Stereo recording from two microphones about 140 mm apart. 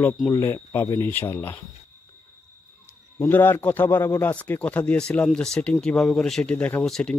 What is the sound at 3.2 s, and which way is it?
Speech, 15° left (ahead or behind).